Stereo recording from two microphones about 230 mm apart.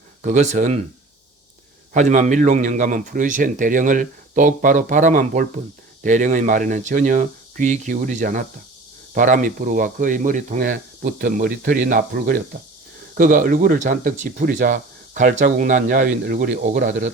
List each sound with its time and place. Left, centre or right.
0.2 s speech: right
1.9 s speech: right